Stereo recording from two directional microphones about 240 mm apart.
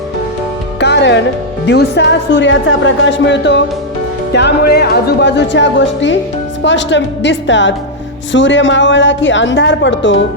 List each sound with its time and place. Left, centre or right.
0.8 s music: left
1.6 s a woman's voice: left